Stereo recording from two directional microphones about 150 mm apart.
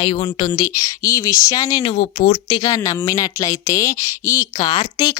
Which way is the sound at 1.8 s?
40° left (ahead or behind).